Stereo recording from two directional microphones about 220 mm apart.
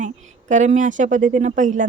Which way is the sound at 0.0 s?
35° right (ahead or behind).